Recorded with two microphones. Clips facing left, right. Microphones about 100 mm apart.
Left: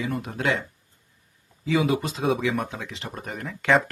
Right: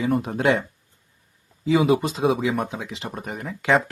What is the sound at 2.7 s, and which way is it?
Speech, 15° right (ahead or behind).